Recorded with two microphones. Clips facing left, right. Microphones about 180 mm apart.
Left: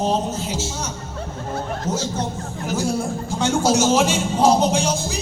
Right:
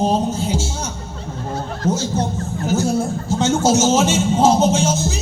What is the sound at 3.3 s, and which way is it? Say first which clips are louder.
Speech: right 2 dB; 25° right (ahead or behind).